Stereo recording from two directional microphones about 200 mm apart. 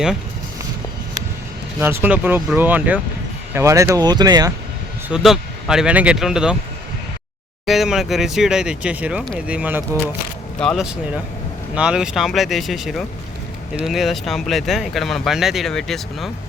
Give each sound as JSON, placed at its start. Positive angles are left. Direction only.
{"t": 1.8, "sound": "speech", "side_deg": -10}
{"t": 5.0, "sound": "speech", "side_deg": -5}
{"t": 7.6, "sound": "speech", "side_deg": 0}
{"t": 10.6, "sound": "speech", "side_deg": 0}